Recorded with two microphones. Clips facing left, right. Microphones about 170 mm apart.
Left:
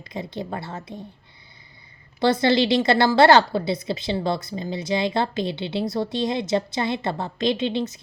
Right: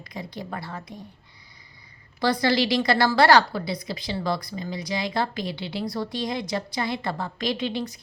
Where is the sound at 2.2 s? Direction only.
25° left (ahead or behind).